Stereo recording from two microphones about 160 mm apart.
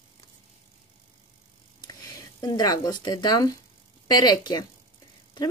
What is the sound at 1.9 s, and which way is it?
Speech, 25° left (ahead or behind).